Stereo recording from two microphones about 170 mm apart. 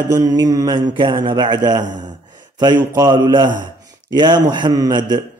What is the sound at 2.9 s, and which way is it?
Speech, 20° right (ahead or behind).